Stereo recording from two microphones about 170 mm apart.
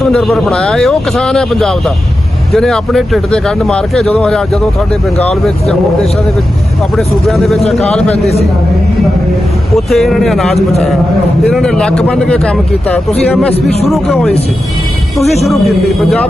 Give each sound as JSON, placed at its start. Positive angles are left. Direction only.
{"t": 0.0, "sound": "speech", "side_deg": 0}
{"t": 6.9, "sound": "a man's voice", "side_deg": 0}
{"t": 9.7, "sound": "speech", "side_deg": 0}
{"t": 15.4, "sound": "speech", "side_deg": 0}